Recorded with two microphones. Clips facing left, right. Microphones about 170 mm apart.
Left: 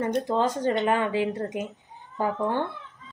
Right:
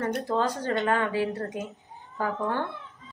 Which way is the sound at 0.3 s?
20° left (ahead or behind).